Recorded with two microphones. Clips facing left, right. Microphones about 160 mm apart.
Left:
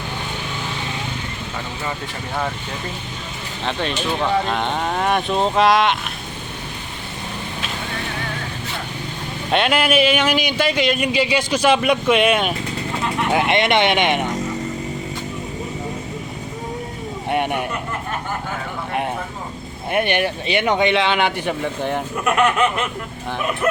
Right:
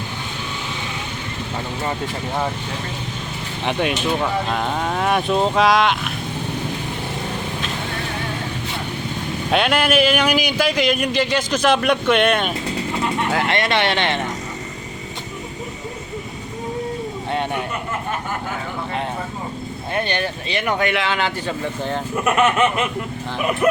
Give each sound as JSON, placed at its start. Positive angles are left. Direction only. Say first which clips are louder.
{"t": 3.7, "sound": "speech", "louder": "right 3 dB", "side_deg": -10}
{"t": 9.5, "sound": "speech", "louder": "even", "side_deg": 0}
{"t": 13.3, "sound": "speech", "louder": "left 5 dB", "side_deg": 20}
{"t": 17.3, "sound": "a sound", "louder": "left 3 dB", "side_deg": 15}
{"t": 19.9, "sound": "speech", "louder": "left 4 dB", "side_deg": 20}
{"t": 22.2, "sound": "speech", "louder": "right 1 dB", "side_deg": -5}